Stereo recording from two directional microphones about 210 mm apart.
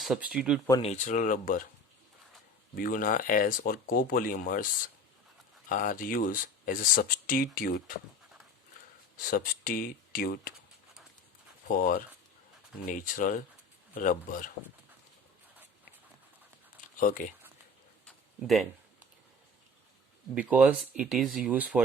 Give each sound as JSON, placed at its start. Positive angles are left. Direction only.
{"t": 0.0, "sound": "speech", "side_deg": -5}
{"t": 0.8, "sound": "speech", "side_deg": 30}
{"t": 2.7, "sound": "speech", "side_deg": 40}
{"t": 5.6, "sound": "speech", "side_deg": 40}
{"t": 9.1, "sound": "speech", "side_deg": 40}
{"t": 11.7, "sound": "speech", "side_deg": 45}
{"t": 17.0, "sound": "speech", "side_deg": 40}
{"t": 18.0, "sound": "a sound", "side_deg": 0}
{"t": 20.3, "sound": "speech", "side_deg": -5}